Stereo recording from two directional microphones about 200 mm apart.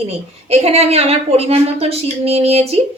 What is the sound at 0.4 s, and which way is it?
A woman's voice, 30° right (ahead or behind).